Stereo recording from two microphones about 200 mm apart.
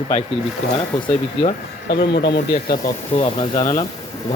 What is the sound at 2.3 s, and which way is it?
Speech, 35° left (ahead or behind).